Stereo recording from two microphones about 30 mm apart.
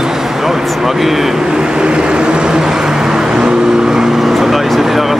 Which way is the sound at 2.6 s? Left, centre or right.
Centre.